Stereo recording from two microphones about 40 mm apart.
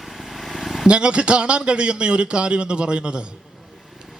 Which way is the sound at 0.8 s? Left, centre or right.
Right.